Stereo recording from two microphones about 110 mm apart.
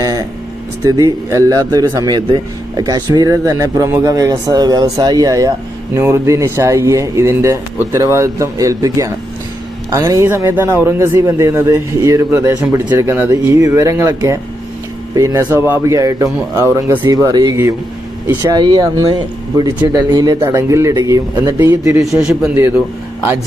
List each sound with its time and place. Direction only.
0.0 s vehicle: 35° right (ahead or behind)
0.8 s speech: 35° right (ahead or behind)
10.2 s speech: 20° right (ahead or behind)
15.4 s speech: 20° right (ahead or behind)
22.0 s a man's voice: 5° right (ahead or behind)